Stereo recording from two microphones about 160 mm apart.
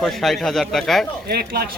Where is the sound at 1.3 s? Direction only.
80° right.